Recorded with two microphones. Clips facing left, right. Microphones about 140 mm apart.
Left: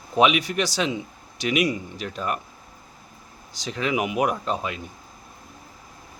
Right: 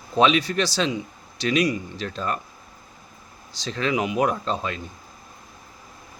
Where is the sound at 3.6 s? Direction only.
15° left (ahead or behind).